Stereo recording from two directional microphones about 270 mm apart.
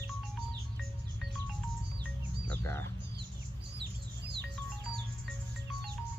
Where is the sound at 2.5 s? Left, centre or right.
Centre.